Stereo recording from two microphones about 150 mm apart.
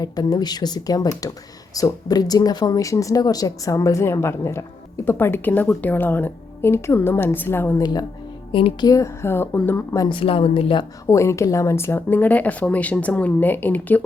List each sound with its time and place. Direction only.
0.0 s a woman's voice: 25° left (ahead or behind)
7.8 s speech: 25° left (ahead or behind)
8.9 s speech: 20° left (ahead or behind)
10.1 s speech: 35° left (ahead or behind)
11.0 s a woman's voice: 20° left (ahead or behind)